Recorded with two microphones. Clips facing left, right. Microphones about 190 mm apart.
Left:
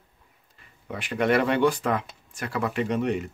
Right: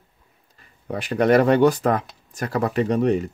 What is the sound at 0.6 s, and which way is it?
Speech, 40° right (ahead or behind).